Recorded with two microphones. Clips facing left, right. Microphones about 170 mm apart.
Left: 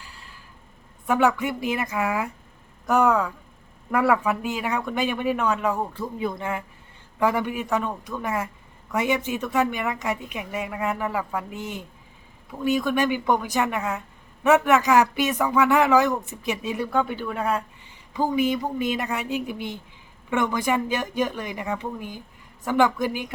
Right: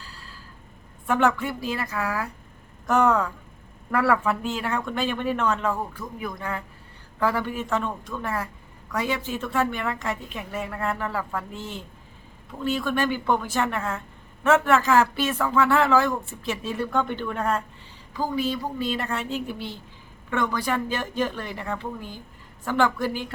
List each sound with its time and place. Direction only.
0.0 s a sound: 20° left (ahead or behind)
1.0 s a woman's voice: 15° left (ahead or behind)
18.1 s speech: 20° left (ahead or behind)